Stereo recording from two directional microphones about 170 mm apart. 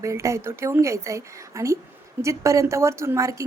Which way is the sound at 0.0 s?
15° right (ahead or behind).